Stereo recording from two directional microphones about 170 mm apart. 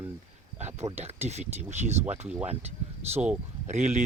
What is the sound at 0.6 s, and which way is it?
Speech, 40° right (ahead or behind).